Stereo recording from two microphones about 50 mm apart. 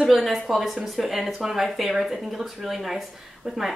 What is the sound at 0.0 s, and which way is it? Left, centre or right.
Speech, centre.